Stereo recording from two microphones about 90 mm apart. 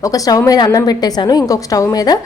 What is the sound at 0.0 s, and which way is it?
A woman's voice, 40° left (ahead or behind).